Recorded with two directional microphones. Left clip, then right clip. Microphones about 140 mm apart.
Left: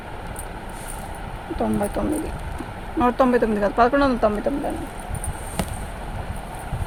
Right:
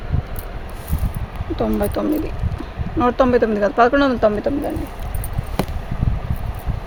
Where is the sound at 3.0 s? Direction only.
45° right (ahead or behind); by 4.5 s 60° right (ahead or behind).